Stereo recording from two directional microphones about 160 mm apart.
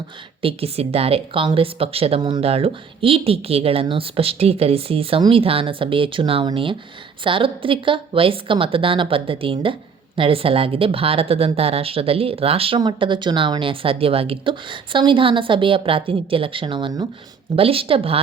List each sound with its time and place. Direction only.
0.4 s speech: 40° right (ahead or behind)